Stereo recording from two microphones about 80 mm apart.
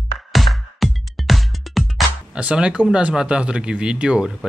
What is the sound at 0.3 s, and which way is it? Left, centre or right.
Music, centre.